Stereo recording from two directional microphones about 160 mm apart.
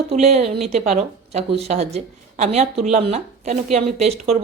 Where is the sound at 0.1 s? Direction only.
45° right (ahead or behind).